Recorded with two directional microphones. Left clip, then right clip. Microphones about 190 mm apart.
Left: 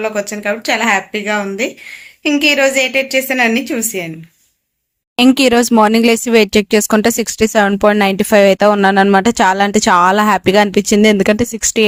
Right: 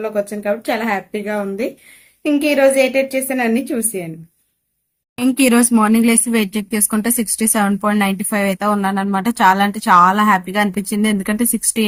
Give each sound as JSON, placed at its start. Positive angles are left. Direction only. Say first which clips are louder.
{"t": 0.0, "sound": "a woman's voice", "louder": "left 2 dB", "side_deg": -5}
{"t": 5.3, "sound": "speech", "louder": "left 2 dB", "side_deg": 50}